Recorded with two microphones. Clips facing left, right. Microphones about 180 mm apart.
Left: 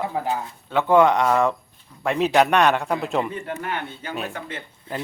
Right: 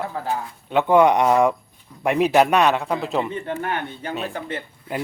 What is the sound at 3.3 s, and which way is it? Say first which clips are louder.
Speech: right 3 dB; 25° right (ahead or behind).